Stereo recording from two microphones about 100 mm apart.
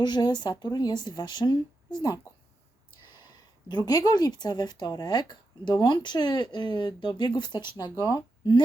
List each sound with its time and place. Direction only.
0.0 s speech: 50° left (ahead or behind)
3.7 s speech: 40° left (ahead or behind)